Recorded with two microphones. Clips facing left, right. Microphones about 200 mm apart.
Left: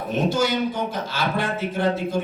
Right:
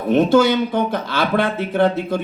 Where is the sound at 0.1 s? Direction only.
60° right (ahead or behind).